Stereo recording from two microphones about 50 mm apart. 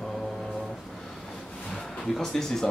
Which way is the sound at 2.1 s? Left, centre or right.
Centre.